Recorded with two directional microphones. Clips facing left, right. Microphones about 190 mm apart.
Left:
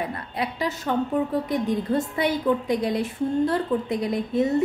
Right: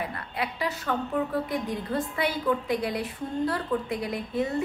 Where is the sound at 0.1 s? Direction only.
25° left (ahead or behind).